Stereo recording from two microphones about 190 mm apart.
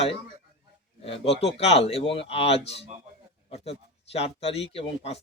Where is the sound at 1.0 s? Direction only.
30° left (ahead or behind).